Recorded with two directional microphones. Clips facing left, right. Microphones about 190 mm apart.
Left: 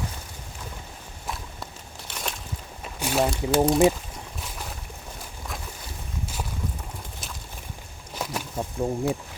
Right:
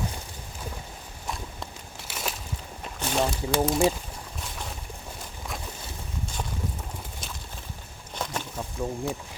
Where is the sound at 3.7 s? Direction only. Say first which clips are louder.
Left 5 dB; centre (ahead or behind).